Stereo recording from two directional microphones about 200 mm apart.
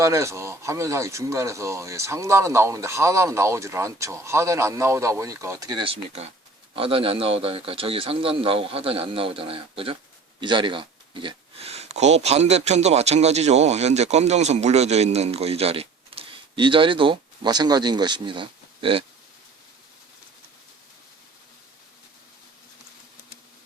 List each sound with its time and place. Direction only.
0.0 s a man's voice: 15° right (ahead or behind)